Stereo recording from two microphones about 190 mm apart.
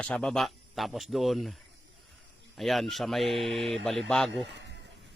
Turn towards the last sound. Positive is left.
turn(degrees=-65)  # may be behind; listen again after turning